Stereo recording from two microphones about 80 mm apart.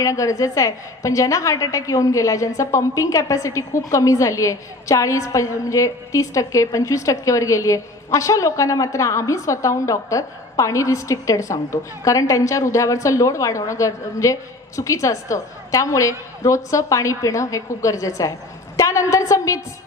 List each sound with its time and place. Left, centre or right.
0.0 s a woman's voice: left